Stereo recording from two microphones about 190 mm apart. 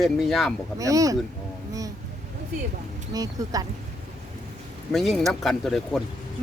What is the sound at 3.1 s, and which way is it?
Speech, 20° right (ahead or behind).